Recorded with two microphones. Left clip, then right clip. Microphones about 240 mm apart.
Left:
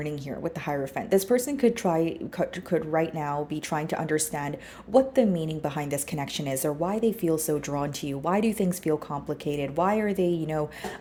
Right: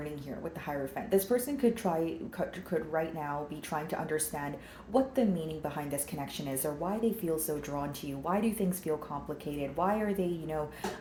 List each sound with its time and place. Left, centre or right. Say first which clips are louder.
0.7 s speech: left 5 dB; left